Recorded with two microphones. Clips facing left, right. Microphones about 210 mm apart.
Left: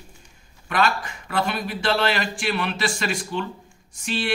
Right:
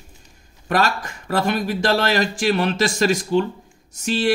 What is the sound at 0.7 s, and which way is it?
A man's voice, 45° right (ahead or behind).